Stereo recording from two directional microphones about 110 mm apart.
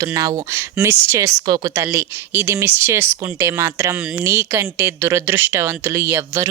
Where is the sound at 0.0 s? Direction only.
30° right (ahead or behind).